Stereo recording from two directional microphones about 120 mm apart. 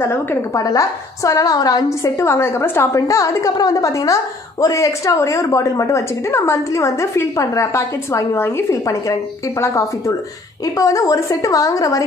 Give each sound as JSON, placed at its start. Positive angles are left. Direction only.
{"t": 0.0, "sound": "a woman's voice", "side_deg": 25}